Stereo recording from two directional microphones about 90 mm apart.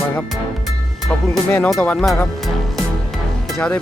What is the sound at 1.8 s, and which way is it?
Speech, 20° left (ahead or behind).